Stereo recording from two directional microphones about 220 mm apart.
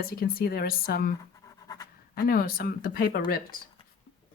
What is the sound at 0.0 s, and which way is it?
Speech, 40° left (ahead or behind).